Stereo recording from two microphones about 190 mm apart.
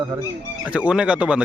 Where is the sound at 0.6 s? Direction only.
5° right (ahead or behind).